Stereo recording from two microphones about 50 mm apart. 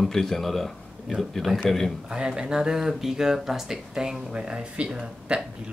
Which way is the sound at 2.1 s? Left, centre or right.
Centre.